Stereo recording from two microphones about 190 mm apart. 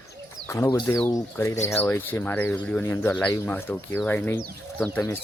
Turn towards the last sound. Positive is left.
turn(degrees=10)  # may be behind; listen again after turning